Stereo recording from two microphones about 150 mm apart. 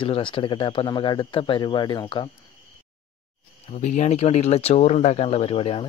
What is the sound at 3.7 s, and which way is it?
Speech, 50° left (ahead or behind).